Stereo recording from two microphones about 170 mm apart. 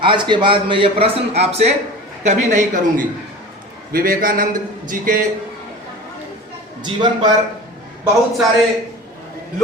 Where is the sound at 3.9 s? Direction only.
60° right (ahead or behind).